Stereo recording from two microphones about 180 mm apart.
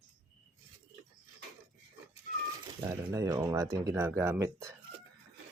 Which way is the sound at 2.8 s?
15° right (ahead or behind).